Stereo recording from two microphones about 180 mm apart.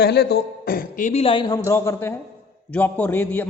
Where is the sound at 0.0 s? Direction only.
65° left (ahead or behind).